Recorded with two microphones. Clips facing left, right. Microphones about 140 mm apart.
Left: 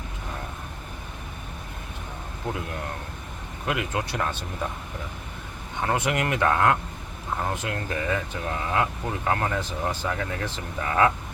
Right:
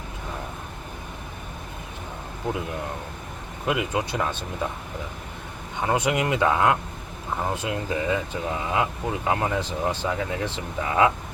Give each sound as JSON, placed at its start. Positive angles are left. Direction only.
{"t": 3.7, "sound": "speech", "side_deg": -20}
{"t": 5.8, "sound": "speech", "side_deg": -15}